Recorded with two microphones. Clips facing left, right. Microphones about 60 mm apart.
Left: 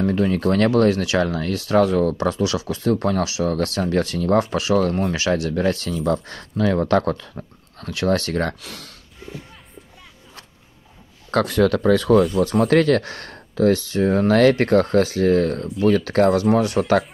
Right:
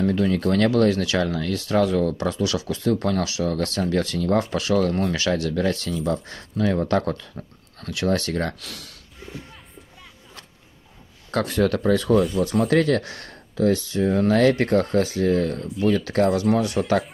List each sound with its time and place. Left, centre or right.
0.3 s speech: left
4.9 s speech: left
5.4 s speech: left
5.9 s speech: left
11.2 s speech: left
12.4 s speech: left